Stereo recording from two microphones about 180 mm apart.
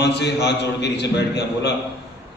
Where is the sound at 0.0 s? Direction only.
70° left (ahead or behind).